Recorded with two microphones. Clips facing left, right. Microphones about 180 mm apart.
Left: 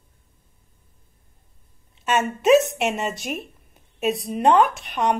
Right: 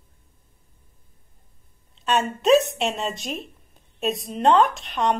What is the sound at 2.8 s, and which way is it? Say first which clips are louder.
Speech: left 2 dB; centre (ahead or behind).